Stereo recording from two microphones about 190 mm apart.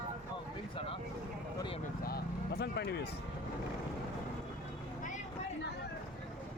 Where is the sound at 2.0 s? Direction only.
55° left (ahead or behind).